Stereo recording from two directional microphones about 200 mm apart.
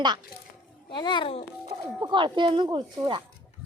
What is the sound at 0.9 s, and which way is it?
Speech, 25° left (ahead or behind).